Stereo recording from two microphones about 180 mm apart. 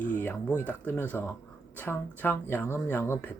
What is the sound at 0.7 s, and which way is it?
Speech, 10° left (ahead or behind).